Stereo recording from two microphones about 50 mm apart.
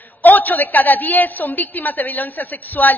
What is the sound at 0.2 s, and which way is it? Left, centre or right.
A woman's voice, left.